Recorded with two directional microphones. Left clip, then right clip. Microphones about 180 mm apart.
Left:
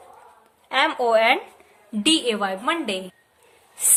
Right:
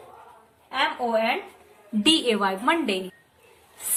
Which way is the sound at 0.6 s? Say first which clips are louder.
Left 5 dB; 60° left (ahead or behind).